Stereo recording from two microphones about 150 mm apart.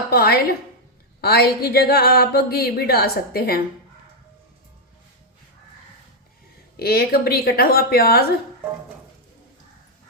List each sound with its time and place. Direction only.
0.1 s speech: 90° left
6.7 s speech: 90° left